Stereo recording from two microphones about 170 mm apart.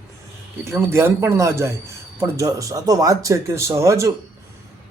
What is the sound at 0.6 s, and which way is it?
Speech, 15° right (ahead or behind).